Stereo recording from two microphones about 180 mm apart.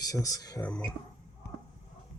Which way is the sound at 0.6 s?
5° left (ahead or behind).